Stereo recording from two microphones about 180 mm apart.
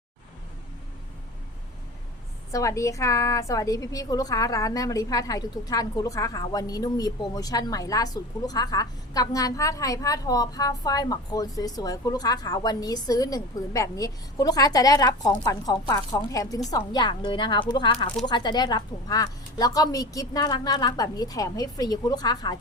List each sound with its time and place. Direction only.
2.5 s a woman's voice: 15° left (ahead or behind)